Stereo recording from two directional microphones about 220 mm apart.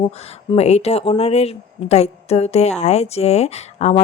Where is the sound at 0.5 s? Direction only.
30° left (ahead or behind).